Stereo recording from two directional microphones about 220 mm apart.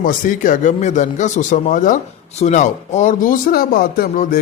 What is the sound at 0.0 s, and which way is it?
Speech, 40° left (ahead or behind).